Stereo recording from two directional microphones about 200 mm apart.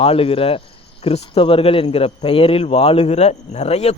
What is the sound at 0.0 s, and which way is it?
A man's voice, 30° left (ahead or behind).